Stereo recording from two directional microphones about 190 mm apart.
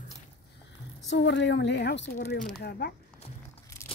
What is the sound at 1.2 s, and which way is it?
Speech, 65° left (ahead or behind).